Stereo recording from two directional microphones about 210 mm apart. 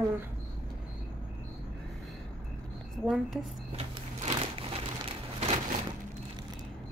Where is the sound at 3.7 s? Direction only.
30° right (ahead or behind).